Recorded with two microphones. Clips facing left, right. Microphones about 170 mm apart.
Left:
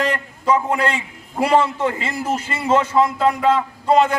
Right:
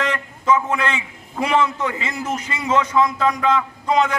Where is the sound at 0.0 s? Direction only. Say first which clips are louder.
Left 2 dB; 30° left (ahead or behind).